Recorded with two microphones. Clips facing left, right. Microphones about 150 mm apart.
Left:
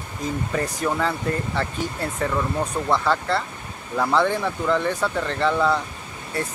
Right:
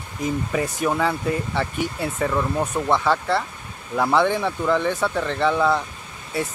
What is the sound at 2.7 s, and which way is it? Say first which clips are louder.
Speech: right 2 dB; 15° right (ahead or behind).